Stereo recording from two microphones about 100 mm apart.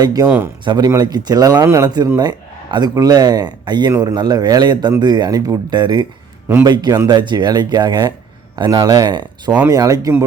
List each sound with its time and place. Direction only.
0.0 s speech: 40° right (ahead or behind)
0.3 s speech: 20° right (ahead or behind)
0.6 s speech: 50° right (ahead or behind); by 1.9 s 30° right (ahead or behind)
2.1 s a sound: 45° right (ahead or behind)
2.9 s speech: 40° right (ahead or behind)
9.6 s speech: 35° right (ahead or behind)